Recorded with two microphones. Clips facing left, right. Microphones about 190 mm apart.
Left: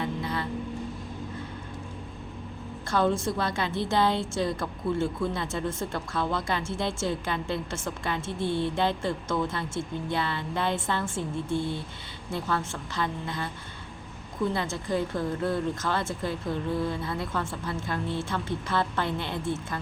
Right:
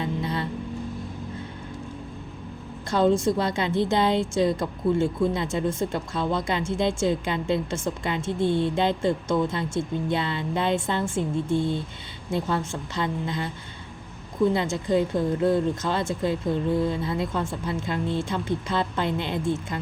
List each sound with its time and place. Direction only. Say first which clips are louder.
0.0 s music: right 3 dB; 25° right (ahead or behind)
2.9 s a woman's voice: right 5 dB; 20° right (ahead or behind)
14.5 s a woman's voice: right 6 dB; 20° right (ahead or behind)